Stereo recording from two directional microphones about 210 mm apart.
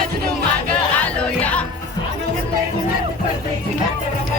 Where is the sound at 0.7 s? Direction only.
5° left (ahead or behind).